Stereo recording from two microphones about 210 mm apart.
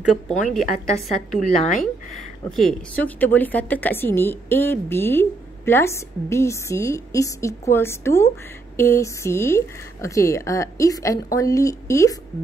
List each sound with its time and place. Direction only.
0.0 s a woman's voice: centre (ahead or behind)
1.7 s speech: 35° left (ahead or behind)
2.5 s a woman's voice: 5° left (ahead or behind)